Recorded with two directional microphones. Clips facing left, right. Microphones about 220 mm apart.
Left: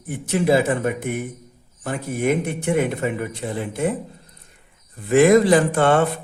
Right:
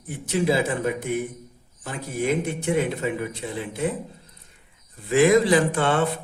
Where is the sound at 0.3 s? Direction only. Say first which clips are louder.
Left 4 dB; 55° left (ahead or behind).